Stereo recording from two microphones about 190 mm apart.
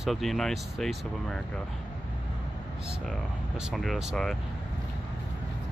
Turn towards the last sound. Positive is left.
turn(degrees=0)  # may be behind; listen again after turning